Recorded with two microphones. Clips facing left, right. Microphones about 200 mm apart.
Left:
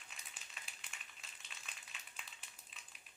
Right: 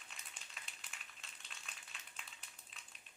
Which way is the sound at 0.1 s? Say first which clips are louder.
Even; centre (ahead or behind).